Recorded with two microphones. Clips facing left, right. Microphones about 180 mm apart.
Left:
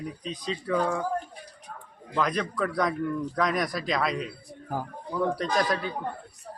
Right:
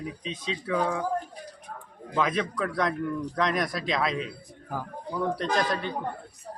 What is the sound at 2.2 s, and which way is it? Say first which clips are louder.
Speech: even; centre (ahead or behind).